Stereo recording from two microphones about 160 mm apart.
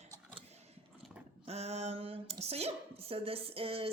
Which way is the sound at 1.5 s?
40° right (ahead or behind).